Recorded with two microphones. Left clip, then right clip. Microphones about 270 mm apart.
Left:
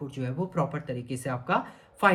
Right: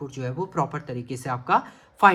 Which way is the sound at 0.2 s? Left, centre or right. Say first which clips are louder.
Right 4 dB; centre.